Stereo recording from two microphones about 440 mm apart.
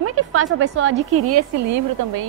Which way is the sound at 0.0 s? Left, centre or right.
Right.